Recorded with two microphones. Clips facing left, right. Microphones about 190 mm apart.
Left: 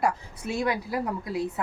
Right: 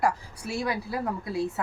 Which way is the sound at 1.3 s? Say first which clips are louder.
Right 2 dB; 20° left (ahead or behind).